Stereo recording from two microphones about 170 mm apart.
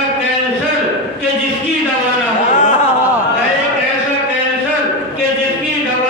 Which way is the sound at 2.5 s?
45° left (ahead or behind).